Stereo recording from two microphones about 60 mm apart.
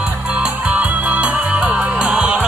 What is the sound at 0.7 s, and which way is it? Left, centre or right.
Music, right.